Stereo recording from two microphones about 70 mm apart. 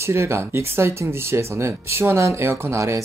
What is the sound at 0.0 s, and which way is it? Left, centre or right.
Speech, right.